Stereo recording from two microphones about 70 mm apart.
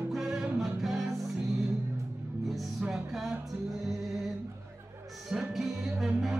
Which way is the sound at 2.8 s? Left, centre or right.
Centre.